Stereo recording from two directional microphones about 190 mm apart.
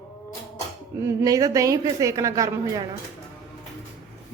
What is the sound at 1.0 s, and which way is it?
A woman's voice, 20° right (ahead or behind).